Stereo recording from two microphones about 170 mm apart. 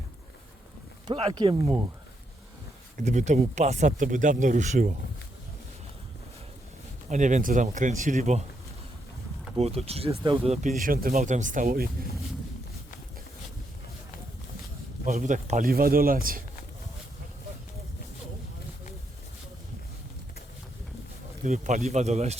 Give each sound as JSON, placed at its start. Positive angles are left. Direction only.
{"t": 1.0, "sound": "speech", "side_deg": -30}
{"t": 3.0, "sound": "speech", "side_deg": -45}
{"t": 7.1, "sound": "speech", "side_deg": -45}
{"t": 9.6, "sound": "speech", "side_deg": -35}
{"t": 10.8, "sound": "speech", "side_deg": -55}
{"t": 15.0, "sound": "speech", "side_deg": -45}
{"t": 21.4, "sound": "speech", "side_deg": -45}